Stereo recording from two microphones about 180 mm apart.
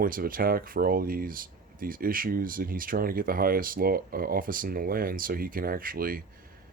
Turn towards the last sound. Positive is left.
turn(degrees=-55)  # may be behind; listen again after turning